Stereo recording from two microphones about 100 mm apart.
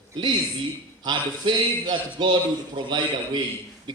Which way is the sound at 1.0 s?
50° right (ahead or behind).